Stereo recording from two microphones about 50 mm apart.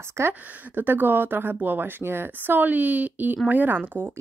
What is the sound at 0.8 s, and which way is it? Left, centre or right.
A woman's voice, right.